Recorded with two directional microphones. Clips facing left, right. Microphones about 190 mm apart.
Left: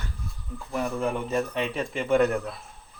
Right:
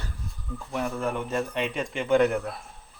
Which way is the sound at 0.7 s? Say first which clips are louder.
Left 1 dB; centre (ahead or behind).